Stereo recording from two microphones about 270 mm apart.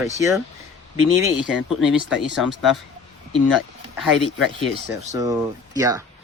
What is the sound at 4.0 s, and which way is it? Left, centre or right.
Speech, centre.